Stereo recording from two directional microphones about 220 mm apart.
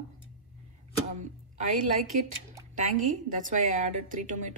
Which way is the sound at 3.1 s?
35° right (ahead or behind).